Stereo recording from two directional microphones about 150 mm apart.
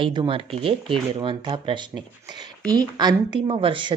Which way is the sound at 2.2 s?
30° right (ahead or behind).